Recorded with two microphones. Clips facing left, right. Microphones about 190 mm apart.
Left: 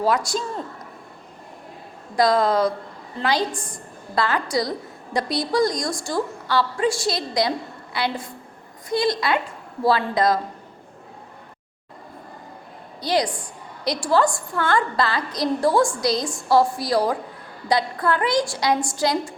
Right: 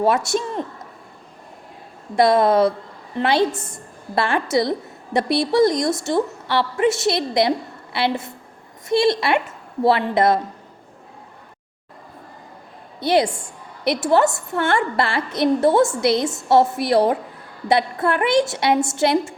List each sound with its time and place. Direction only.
0.0 s a man's voice: 25° right (ahead or behind)
2.1 s a woman's voice: 25° right (ahead or behind)
13.0 s a woman's voice: 25° right (ahead or behind)